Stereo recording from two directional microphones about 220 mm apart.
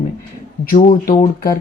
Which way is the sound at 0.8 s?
40° left (ahead or behind).